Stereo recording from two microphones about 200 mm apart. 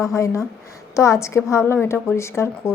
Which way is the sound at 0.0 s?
15° left (ahead or behind).